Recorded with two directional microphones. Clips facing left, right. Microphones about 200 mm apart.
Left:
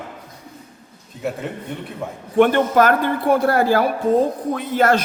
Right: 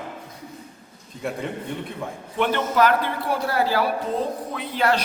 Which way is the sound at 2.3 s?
50° left (ahead or behind).